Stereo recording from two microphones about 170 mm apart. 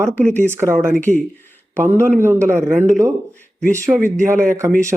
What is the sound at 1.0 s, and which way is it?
Speech, 10° left (ahead or behind).